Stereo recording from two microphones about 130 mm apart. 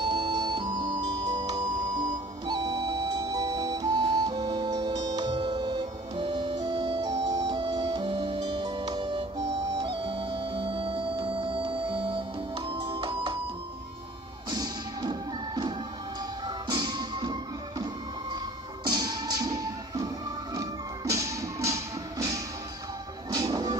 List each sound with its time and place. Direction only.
0.0 s music: 35° right (ahead or behind)
14.5 s music: 35° right (ahead or behind)
18.9 s music: 30° right (ahead or behind)